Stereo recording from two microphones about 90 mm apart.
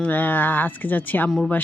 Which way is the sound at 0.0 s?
20° left (ahead or behind).